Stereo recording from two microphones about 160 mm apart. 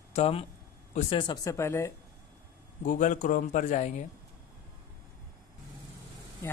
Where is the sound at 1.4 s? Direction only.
20° left (ahead or behind).